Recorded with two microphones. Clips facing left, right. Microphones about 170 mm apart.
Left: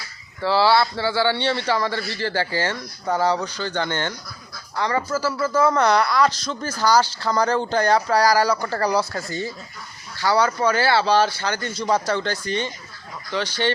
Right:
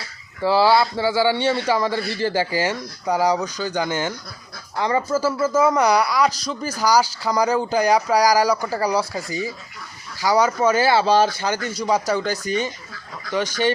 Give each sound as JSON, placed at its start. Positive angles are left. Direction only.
{"t": 0.4, "sound": "a man's voice", "side_deg": -15}
{"t": 4.8, "sound": "a man's voice", "side_deg": -20}
{"t": 10.2, "sound": "a man's voice", "side_deg": -15}